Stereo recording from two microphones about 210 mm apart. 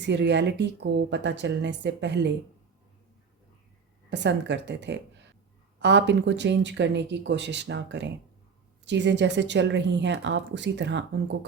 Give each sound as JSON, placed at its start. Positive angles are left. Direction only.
{"t": 0.0, "sound": "speech", "side_deg": -55}
{"t": 4.1, "sound": "speech", "side_deg": -55}